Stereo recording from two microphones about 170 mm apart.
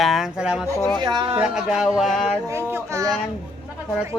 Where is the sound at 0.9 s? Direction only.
25° right (ahead or behind).